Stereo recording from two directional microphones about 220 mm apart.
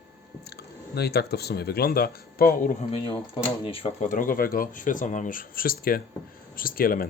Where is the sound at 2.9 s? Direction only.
25° left (ahead or behind); by 7.1 s 40° left (ahead or behind).